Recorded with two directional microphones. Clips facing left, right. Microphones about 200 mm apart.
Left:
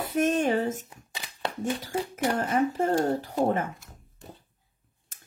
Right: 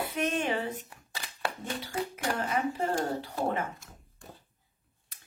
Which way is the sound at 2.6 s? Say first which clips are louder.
Left 7 dB; 45° left (ahead or behind).